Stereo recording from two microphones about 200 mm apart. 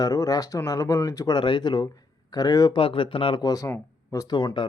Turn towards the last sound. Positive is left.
turn(degrees=20)  # may be behind; listen again after turning